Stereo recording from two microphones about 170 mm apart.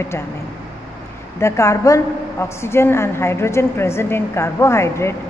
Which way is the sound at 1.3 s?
15° left (ahead or behind).